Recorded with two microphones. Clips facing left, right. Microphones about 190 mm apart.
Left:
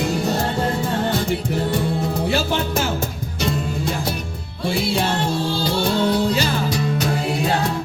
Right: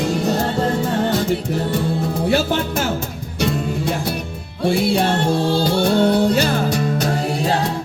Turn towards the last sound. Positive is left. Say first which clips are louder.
# right 1 dB
turn(degrees=-40)  # may be behind; listen again after turning